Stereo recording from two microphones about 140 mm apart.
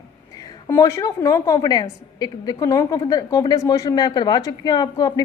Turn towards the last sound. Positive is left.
turn(degrees=30)  # may be behind; listen again after turning